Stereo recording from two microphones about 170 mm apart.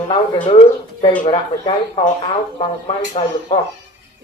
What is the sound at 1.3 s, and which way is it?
Speech, 30° left (ahead or behind).